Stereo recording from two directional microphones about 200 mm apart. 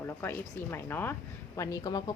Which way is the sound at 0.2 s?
10° left (ahead or behind).